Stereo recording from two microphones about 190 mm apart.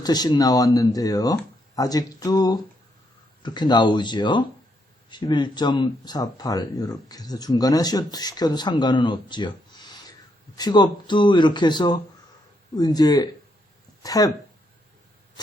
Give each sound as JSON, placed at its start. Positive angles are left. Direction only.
{"t": 0.0, "sound": "speech", "side_deg": 20}